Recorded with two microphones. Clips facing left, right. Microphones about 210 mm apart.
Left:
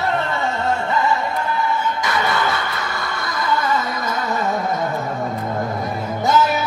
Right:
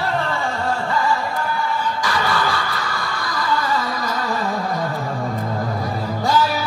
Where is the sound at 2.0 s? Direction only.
20° left (ahead or behind).